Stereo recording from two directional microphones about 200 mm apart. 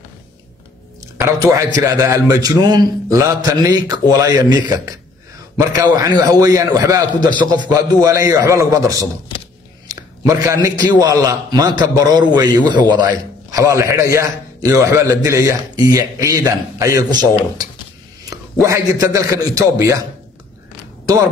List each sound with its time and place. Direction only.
1.0 s a man's voice: 15° right (ahead or behind)